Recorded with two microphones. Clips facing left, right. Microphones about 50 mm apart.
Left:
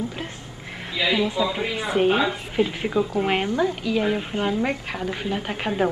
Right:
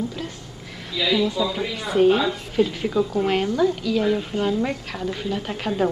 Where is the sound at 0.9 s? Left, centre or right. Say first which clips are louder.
Right 1 dB; left.